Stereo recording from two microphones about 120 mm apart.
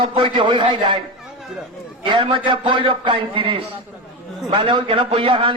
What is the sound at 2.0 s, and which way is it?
A man's voice, 45° right (ahead or behind).